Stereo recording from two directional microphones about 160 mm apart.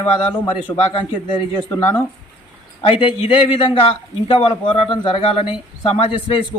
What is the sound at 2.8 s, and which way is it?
A man's voice, 35° left (ahead or behind).